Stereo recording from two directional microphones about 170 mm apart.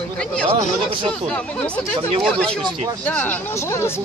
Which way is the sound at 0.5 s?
30° right (ahead or behind).